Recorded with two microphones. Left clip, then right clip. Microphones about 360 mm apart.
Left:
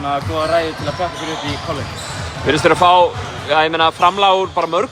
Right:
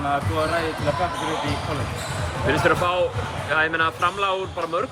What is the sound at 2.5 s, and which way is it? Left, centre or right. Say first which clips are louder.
Speech: left 9 dB; centre.